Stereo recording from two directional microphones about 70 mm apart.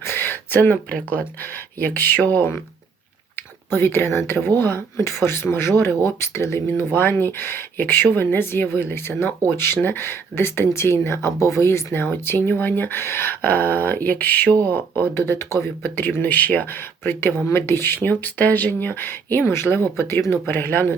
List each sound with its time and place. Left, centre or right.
0.0 s a sound: left
1.8 s speech: left
3.7 s speech: left
6.7 s speech: left
15.3 s speech: left
15.8 s speech: left